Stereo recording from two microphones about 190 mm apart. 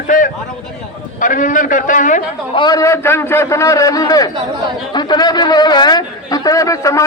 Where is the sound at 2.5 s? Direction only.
20° left (ahead or behind).